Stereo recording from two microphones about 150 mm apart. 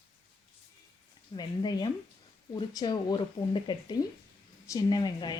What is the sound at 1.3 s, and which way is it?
Speech, 30° left (ahead or behind).